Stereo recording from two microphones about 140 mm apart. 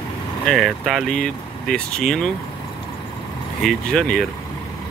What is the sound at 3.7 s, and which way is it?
Speech, 5° left (ahead or behind).